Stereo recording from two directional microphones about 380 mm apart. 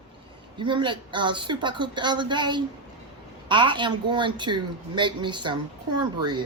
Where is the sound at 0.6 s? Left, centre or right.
Centre.